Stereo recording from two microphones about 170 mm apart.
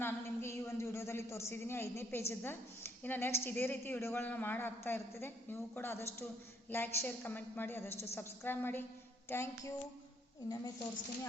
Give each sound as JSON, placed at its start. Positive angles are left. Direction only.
{"t": 0.0, "sound": "a woman's voice", "side_deg": 15}